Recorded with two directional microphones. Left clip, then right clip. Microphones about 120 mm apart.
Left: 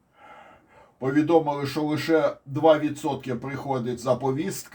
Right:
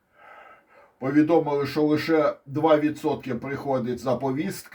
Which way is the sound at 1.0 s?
35° right (ahead or behind).